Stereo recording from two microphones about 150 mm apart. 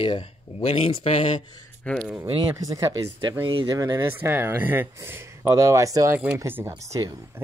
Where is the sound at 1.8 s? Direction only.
5° left (ahead or behind).